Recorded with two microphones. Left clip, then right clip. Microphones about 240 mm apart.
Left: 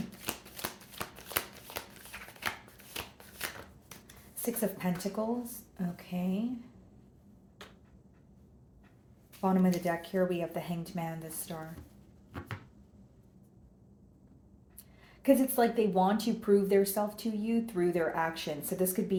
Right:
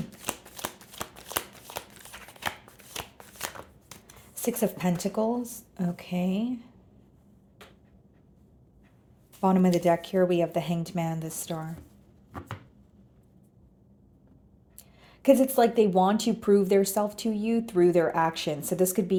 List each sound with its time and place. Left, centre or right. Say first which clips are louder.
0.3 s shuffling cards: right 4 dB; right
4.4 s speech: right 6 dB; right
9.4 s speech: right 7 dB; right
15.2 s speech: right 6 dB; right